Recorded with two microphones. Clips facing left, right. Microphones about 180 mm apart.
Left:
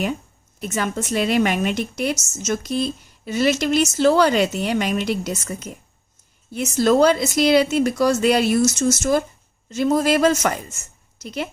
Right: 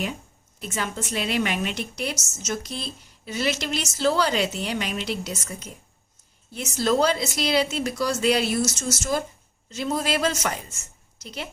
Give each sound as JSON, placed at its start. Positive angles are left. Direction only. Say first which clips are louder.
{"t": 0.6, "sound": "a woman's voice", "louder": "left 6 dB", "side_deg": 50}